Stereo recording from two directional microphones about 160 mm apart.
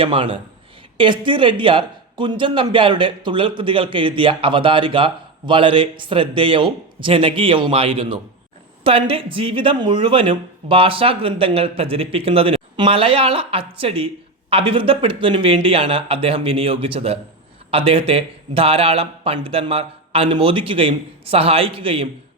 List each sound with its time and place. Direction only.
0.0 s speech: 35° right (ahead or behind)